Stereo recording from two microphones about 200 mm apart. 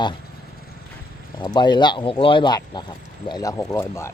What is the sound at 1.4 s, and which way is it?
Speech, 20° left (ahead or behind).